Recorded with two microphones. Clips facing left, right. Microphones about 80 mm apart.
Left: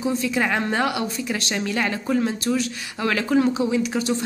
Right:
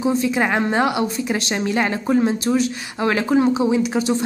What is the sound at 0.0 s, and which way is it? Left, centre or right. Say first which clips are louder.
A woman's voice: right 4 dB; right.